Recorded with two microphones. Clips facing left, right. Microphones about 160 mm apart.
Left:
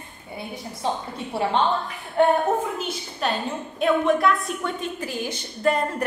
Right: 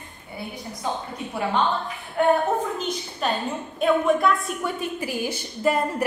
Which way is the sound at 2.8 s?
Centre (ahead or behind).